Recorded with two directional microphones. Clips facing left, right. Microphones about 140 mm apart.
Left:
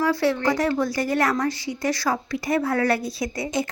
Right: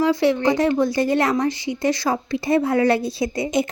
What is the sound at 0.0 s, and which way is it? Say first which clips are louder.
A woman's voice: right 4 dB; 20° right (ahead or behind).